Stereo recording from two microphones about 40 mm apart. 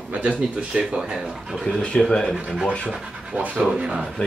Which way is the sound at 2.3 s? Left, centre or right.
Right.